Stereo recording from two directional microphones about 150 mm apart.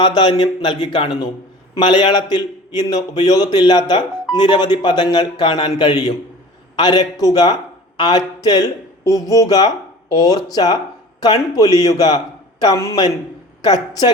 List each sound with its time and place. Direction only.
0.0 s a man's voice: 30° left (ahead or behind)